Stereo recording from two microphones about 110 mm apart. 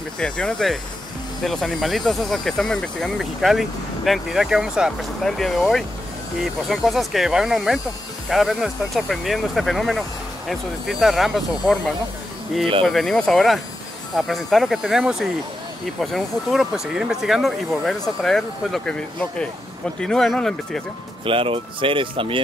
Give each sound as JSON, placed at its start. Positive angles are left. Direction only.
{"t": 0.2, "sound": "speech", "side_deg": 5}
{"t": 12.8, "sound": "speech", "side_deg": 0}
{"t": 21.3, "sound": "speech", "side_deg": -55}